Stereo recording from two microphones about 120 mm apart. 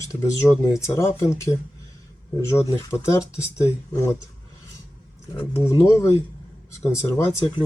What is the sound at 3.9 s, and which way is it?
Speech, 25° left (ahead or behind).